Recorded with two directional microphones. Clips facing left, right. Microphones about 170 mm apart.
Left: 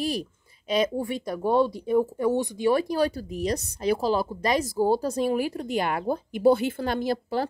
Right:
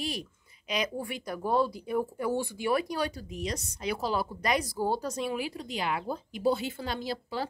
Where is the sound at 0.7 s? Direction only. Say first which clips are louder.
Left 8 dB; 25° left (ahead or behind).